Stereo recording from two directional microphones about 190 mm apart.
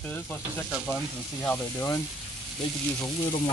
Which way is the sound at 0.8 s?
5° left (ahead or behind).